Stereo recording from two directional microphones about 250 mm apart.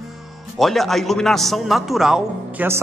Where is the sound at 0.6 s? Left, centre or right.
Centre.